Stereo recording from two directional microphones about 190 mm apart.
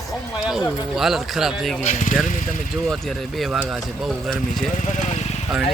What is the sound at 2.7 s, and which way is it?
Speech, centre (ahead or behind).